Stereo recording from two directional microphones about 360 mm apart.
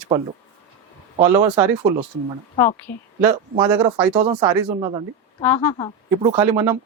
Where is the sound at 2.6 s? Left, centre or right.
Centre.